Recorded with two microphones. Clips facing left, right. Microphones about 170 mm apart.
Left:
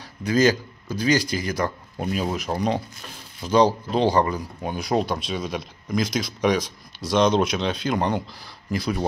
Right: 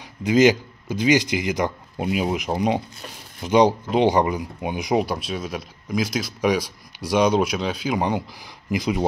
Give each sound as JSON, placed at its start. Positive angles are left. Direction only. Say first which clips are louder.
{"t": 0.2, "sound": "speech", "louder": "right 3 dB", "side_deg": -20}